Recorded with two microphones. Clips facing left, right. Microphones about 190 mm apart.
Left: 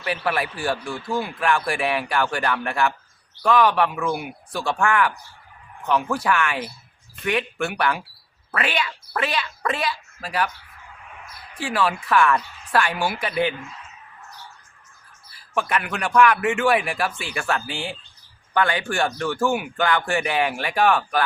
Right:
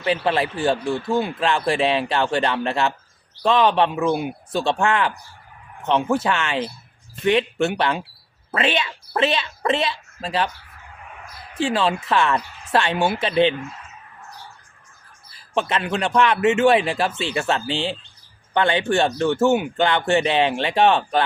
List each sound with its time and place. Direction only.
0.0 s speech: 25° right (ahead or behind)
11.5 s speech: 25° right (ahead or behind)
15.5 s speech: 25° right (ahead or behind)